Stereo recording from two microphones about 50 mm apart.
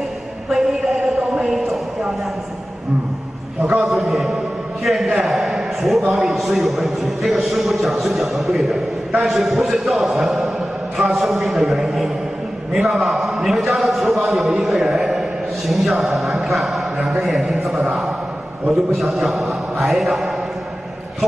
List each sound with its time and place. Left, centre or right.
0.5 s a sound: centre
3.6 s a man's voice: centre
3.9 s a man's voice: centre